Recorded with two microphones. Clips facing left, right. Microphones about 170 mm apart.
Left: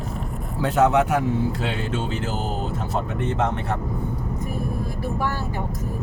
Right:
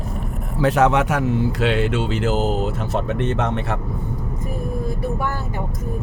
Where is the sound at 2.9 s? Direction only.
80° right.